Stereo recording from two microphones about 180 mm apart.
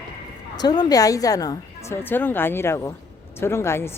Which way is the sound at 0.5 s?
20° left (ahead or behind).